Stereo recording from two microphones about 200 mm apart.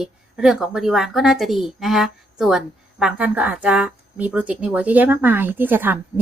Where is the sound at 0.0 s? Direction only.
5° right (ahead or behind).